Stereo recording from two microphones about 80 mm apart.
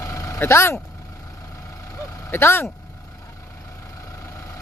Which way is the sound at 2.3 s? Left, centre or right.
Left.